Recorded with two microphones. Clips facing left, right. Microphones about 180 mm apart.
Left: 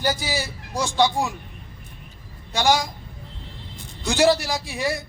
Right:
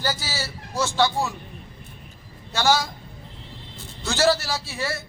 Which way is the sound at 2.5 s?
15° left (ahead or behind).